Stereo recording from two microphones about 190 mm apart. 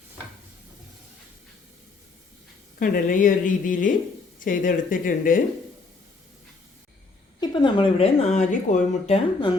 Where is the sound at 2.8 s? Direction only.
45° left (ahead or behind).